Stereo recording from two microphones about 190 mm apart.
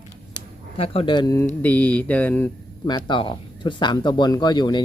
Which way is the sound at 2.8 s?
25° left (ahead or behind).